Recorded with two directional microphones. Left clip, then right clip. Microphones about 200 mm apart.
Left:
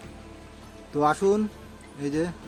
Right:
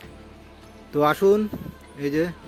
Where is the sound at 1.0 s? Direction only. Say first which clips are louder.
Right 4 dB; 10° right (ahead or behind).